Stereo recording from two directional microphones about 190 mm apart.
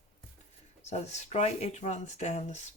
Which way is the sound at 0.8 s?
35° left (ahead or behind).